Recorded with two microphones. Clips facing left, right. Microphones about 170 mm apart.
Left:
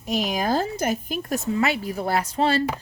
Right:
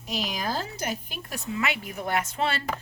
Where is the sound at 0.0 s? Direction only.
50° left (ahead or behind).